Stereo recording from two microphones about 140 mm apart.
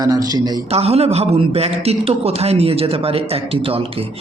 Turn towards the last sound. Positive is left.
turn(degrees=-45)  # may be behind; listen again after turning